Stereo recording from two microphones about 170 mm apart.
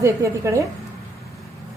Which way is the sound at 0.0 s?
15° right (ahead or behind).